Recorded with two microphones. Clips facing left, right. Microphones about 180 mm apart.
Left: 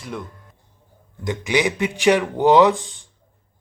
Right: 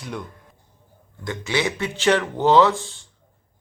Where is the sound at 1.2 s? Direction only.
15° left (ahead or behind).